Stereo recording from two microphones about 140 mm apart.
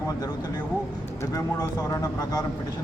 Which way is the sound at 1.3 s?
25° left (ahead or behind).